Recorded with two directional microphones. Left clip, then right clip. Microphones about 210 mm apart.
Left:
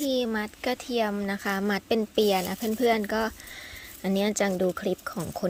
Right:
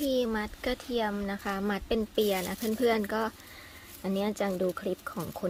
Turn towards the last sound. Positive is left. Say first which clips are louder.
# left 4 dB
turn(degrees=20)  # may be behind; listen again after turning